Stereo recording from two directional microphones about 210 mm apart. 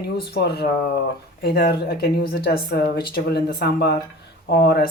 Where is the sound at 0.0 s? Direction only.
50° left (ahead or behind).